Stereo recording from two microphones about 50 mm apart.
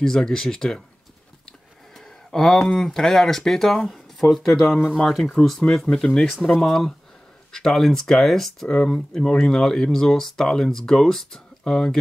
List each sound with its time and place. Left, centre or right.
0.0 s speech: centre
2.0 s a sound: centre
2.6 s speech: left; by 8.6 s centre
8.6 s speech: centre